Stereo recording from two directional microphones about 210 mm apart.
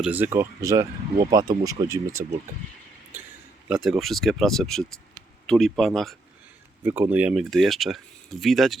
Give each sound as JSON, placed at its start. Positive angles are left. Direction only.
{"t": 0.0, "sound": "speech", "side_deg": -10}
{"t": 3.7, "sound": "speech", "side_deg": 0}
{"t": 6.8, "sound": "speech", "side_deg": -10}